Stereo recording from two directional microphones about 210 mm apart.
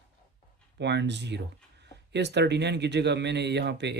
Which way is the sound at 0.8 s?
55° right (ahead or behind).